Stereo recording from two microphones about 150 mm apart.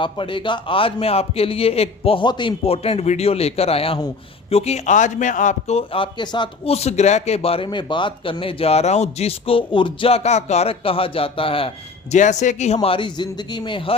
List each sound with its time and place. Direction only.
0.0 s a man's voice: 35° left (ahead or behind)
6.7 s a man's voice: 45° left (ahead or behind)
12.1 s a man's voice: 55° left (ahead or behind); by 13.9 s 35° left (ahead or behind)